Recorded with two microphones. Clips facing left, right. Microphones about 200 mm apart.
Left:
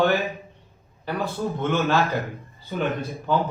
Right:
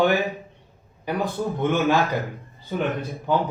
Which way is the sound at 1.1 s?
15° right (ahead or behind).